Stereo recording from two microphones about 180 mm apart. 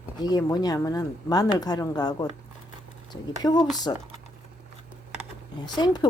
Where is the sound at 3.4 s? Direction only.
20° left (ahead or behind).